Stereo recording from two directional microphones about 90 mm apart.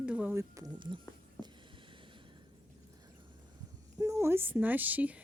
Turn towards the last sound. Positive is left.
turn(degrees=-15)  # may be behind; listen again after turning